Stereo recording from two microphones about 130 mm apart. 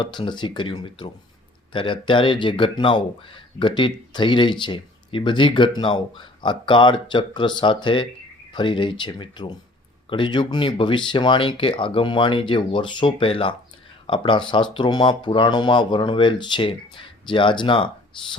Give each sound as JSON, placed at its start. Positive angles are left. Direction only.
{"t": 0.0, "sound": "speech", "side_deg": 35}